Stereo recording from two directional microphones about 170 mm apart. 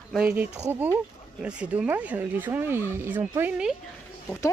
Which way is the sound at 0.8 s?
10° right (ahead or behind).